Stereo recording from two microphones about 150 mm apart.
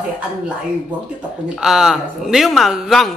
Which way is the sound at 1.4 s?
5° right (ahead or behind).